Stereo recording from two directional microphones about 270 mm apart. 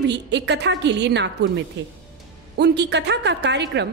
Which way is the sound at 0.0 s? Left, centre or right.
Right.